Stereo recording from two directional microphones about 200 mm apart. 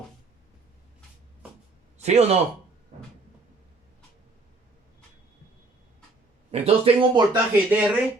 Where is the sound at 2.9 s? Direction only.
35° right (ahead or behind).